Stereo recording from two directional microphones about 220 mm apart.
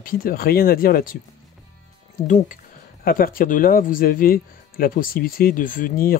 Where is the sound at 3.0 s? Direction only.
40° left (ahead or behind).